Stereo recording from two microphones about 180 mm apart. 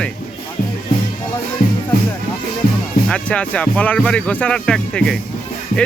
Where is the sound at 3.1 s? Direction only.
5° left (ahead or behind).